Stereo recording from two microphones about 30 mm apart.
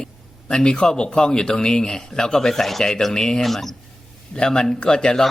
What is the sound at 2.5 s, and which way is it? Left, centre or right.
Speech, centre.